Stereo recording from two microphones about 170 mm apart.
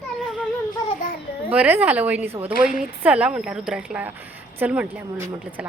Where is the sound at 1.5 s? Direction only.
10° right (ahead or behind).